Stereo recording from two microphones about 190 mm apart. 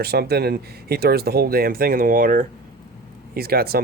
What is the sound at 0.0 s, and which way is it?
Speech, 55° right (ahead or behind).